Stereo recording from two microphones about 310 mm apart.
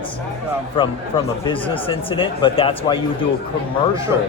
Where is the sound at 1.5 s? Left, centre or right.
Centre.